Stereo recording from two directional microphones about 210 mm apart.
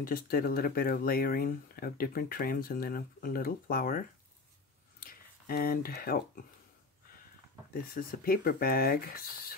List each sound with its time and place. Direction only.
0.0 s speech: 45° left (ahead or behind)
5.0 s speech: 45° left (ahead or behind)
7.9 s speech: 45° left (ahead or behind)